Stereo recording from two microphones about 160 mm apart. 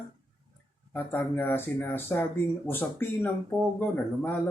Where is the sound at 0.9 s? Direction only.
10° left (ahead or behind).